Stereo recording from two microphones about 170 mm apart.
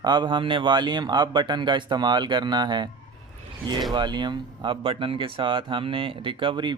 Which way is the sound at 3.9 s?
25° right (ahead or behind).